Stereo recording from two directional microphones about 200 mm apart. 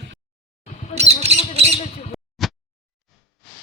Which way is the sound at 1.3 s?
30° right (ahead or behind).